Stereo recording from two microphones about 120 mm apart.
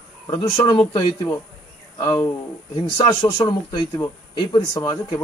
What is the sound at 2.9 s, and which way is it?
A man's voice, 35° left (ahead or behind).